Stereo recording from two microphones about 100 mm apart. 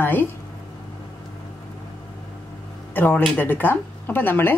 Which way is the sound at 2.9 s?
20° left (ahead or behind).